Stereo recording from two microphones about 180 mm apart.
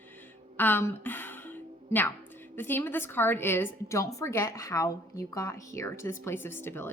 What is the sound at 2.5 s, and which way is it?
A woman's voice, 10° left (ahead or behind).